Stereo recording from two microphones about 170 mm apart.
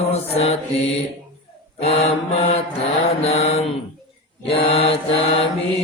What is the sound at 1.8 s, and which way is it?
Mantra, 35° left (ahead or behind).